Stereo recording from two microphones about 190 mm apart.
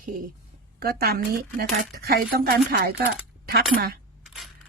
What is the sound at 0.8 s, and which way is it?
Speech, 50° right (ahead or behind).